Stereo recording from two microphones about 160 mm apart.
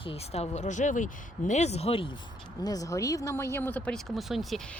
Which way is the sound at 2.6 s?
20° left (ahead or behind).